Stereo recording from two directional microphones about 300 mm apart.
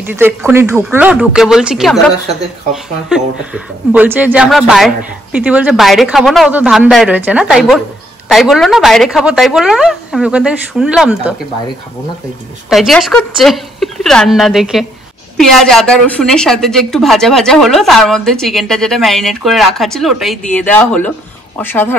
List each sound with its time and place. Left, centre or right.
0.0 s speech: centre
12.6 s speech: centre